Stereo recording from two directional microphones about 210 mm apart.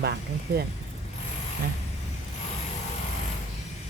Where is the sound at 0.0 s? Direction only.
50° right (ahead or behind).